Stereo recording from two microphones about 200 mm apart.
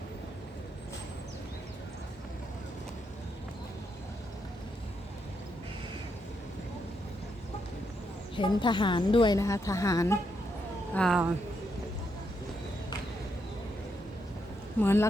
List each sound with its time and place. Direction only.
8.4 s a woman's voice: 25° left (ahead or behind)
10.9 s speech: centre (ahead or behind)
14.8 s speech: 10° left (ahead or behind)